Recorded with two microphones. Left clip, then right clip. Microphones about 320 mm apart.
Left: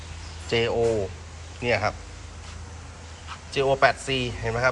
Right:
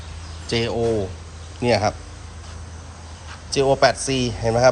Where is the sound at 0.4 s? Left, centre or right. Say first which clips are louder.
Right 1 dB; centre.